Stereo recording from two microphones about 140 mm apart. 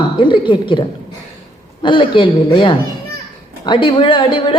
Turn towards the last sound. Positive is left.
turn(degrees=35)  # may be behind; listen again after turning